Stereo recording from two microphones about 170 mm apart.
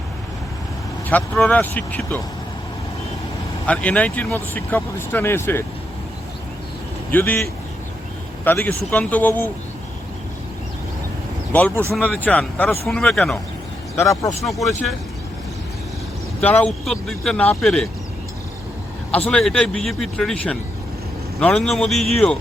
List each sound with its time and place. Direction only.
1.1 s speech: 10° left (ahead or behind)
3.7 s speech: 5° left (ahead or behind)
7.1 s speech: 10° left (ahead or behind)
11.7 s speech: 15° right (ahead or behind)
11.9 s speech: 5° left (ahead or behind)
13.9 s speech: 15° left (ahead or behind)
14.4 s speech: centre (ahead or behind)
16.4 s speech: 10° left (ahead or behind)
19.3 s speech: 5° left (ahead or behind)